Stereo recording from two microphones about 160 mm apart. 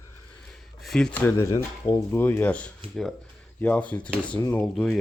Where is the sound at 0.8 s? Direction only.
Centre (ahead or behind).